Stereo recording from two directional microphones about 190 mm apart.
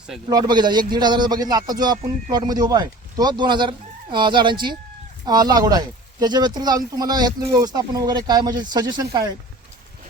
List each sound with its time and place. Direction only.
0.3 s speech: 20° right (ahead or behind)